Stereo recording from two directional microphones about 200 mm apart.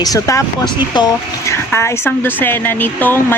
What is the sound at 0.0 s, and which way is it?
Speech, 15° left (ahead or behind).